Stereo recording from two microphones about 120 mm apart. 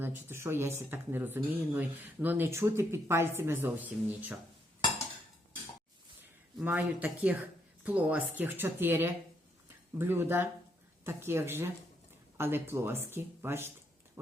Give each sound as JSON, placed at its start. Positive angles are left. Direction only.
{"t": 0.0, "sound": "speech", "side_deg": -20}
{"t": 6.6, "sound": "speech", "side_deg": -15}